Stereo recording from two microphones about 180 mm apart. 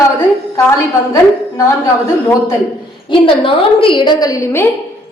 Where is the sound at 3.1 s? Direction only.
30° left (ahead or behind).